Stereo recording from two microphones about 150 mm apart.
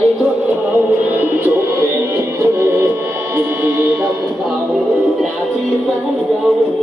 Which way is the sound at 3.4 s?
15° right (ahead or behind).